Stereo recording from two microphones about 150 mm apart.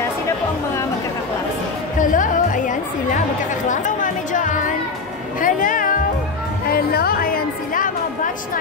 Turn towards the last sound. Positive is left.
turn(degrees=70)  # may be behind; listen again after turning